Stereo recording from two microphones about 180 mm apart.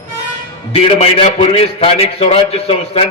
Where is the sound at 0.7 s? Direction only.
35° left (ahead or behind).